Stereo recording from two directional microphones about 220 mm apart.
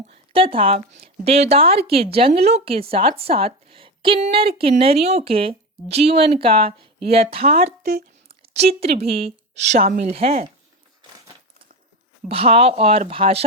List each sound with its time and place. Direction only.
0.1 s speech: 25° right (ahead or behind)
8.3 s a sound: 25° right (ahead or behind)
9.0 s speech: 25° right (ahead or behind)
12.3 s speech: 25° right (ahead or behind)